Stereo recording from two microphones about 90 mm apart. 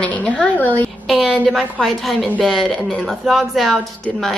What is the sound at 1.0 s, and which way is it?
A woman's voice, 5° right (ahead or behind).